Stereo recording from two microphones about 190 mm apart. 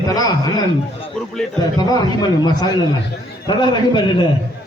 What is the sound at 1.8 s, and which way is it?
A man's voice, 20° left (ahead or behind).